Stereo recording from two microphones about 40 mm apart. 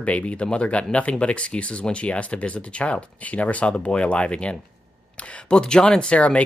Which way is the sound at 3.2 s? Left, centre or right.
Left.